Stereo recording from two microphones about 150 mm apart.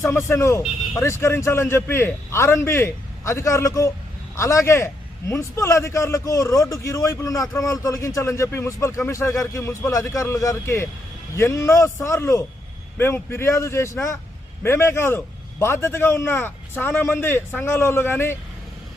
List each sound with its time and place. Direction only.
0.0 s a man's voice: 20° left (ahead or behind)